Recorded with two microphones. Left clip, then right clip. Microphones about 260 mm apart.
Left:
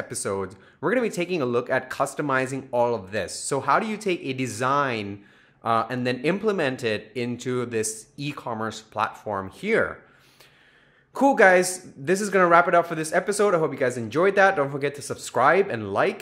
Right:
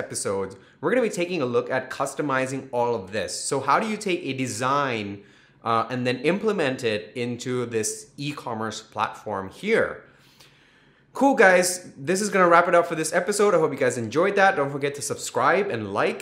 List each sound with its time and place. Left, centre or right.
0.1 s speech: left
11.1 s speech: left